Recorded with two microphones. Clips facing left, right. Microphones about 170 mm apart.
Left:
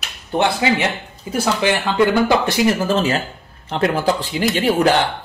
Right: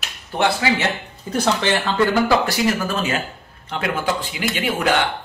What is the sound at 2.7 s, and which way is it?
Speech, 30° left (ahead or behind).